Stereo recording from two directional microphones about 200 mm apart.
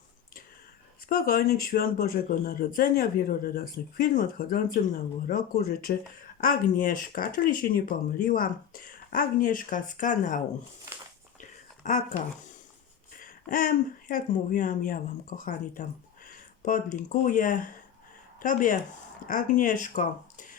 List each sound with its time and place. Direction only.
1.0 s speech: 45° left (ahead or behind)
11.3 s a sound: 40° left (ahead or behind)
13.1 s speech: 45° left (ahead or behind)